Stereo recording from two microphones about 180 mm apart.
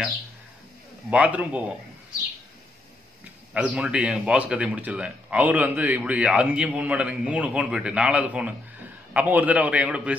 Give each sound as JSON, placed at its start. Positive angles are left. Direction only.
{"t": 1.1, "sound": "a man's voice", "side_deg": -5}
{"t": 3.5, "sound": "a man's voice", "side_deg": -5}